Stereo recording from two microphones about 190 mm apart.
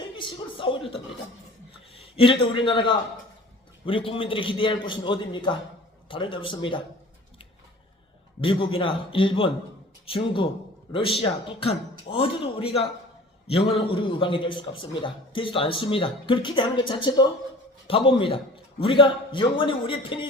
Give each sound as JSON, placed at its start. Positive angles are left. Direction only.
{"t": 0.2, "sound": "a man's voice", "side_deg": 25}
{"t": 8.4, "sound": "a man's voice", "side_deg": 30}